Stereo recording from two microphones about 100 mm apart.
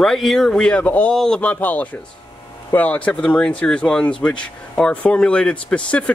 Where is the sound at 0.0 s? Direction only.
5° left (ahead or behind).